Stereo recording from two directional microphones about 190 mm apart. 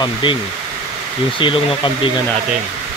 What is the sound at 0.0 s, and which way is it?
Speech, 25° left (ahead or behind).